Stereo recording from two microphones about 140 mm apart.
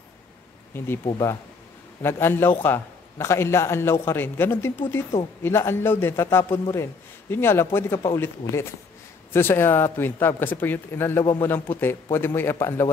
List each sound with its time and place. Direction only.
0.7 s a man's voice: 15° left (ahead or behind)